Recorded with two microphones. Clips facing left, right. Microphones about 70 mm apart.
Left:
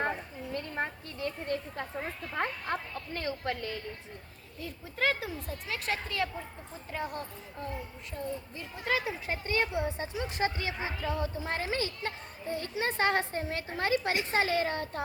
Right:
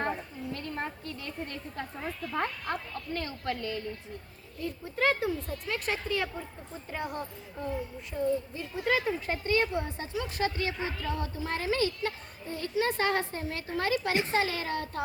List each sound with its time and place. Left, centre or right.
0.5 s a sound: centre
2.0 s a woman's voice: left
4.6 s speech: centre
9.5 s a woman's voice: centre